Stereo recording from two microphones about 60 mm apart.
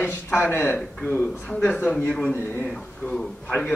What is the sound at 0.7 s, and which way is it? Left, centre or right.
Speech, centre.